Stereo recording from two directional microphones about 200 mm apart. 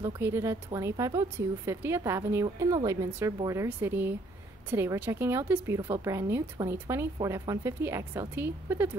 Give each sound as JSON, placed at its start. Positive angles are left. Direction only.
{"t": 0.0, "sound": "a woman's voice", "side_deg": -15}